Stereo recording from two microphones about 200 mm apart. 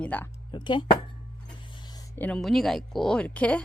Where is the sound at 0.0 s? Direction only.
10° left (ahead or behind).